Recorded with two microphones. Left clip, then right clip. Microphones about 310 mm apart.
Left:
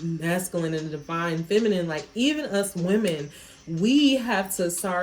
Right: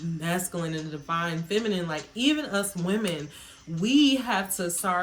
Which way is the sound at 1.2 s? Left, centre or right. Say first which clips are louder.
Left 8 dB; centre.